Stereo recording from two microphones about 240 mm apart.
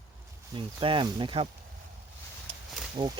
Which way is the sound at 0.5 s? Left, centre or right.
Right.